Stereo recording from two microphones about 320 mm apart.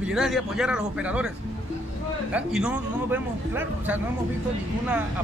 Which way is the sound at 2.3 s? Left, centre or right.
Centre.